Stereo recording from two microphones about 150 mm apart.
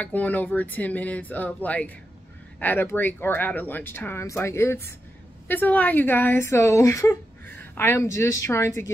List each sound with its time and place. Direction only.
0.0 s speech: 10° left (ahead or behind)